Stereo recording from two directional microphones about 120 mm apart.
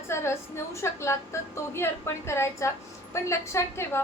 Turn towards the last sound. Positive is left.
turn(degrees=25)  # may be behind; listen again after turning